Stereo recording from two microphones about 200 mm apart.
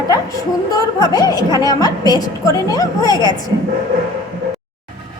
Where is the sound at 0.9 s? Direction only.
20° left (ahead or behind).